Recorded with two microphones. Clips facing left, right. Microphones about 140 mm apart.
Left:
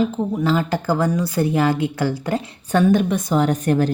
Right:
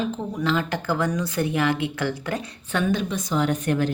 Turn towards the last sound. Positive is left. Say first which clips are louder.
# left 4 dB
turn(degrees=40)  # may be behind; listen again after turning